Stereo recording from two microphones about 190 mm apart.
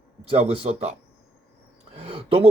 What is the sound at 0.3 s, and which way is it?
Speech, 30° right (ahead or behind).